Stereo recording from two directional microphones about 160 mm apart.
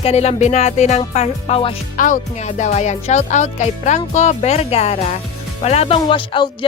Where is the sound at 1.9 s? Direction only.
55° left (ahead or behind).